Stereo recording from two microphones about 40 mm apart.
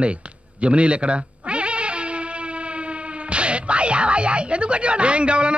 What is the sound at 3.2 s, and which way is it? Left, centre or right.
Speech, right.